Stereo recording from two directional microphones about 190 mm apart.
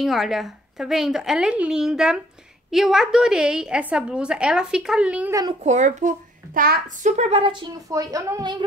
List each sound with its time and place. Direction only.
0.0 s a woman's voice: centre (ahead or behind)
5.3 s speech: 20° right (ahead or behind)
5.6 s a child's voice: 40° right (ahead or behind); by 8.6 s 20° right (ahead or behind)